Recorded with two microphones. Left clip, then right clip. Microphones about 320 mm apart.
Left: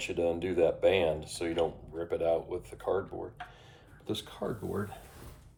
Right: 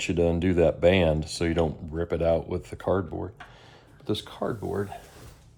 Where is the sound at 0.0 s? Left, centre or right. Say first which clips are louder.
Right 6 dB; right.